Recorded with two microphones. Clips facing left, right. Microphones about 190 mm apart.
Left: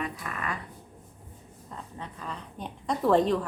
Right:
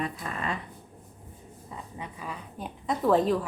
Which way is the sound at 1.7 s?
10° right (ahead or behind).